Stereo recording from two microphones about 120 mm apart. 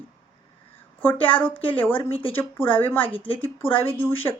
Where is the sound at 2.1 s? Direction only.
50° left (ahead or behind).